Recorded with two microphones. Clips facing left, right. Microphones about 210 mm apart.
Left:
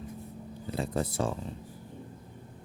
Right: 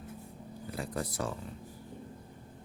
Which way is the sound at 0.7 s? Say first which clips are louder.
Left 5 dB; 25° left (ahead or behind).